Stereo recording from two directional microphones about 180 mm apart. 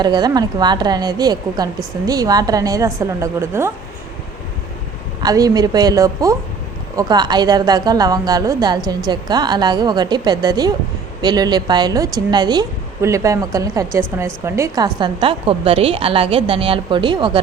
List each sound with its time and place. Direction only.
0.0 s a woman's voice: 25° right (ahead or behind)
5.2 s a woman's voice: 20° right (ahead or behind)